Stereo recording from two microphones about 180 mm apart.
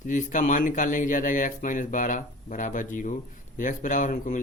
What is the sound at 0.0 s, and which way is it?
Speech, 45° left (ahead or behind).